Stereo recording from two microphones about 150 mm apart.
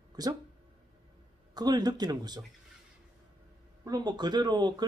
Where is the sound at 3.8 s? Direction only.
25° right (ahead or behind).